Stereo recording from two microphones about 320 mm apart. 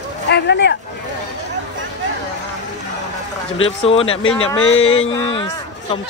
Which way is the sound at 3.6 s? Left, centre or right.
Centre.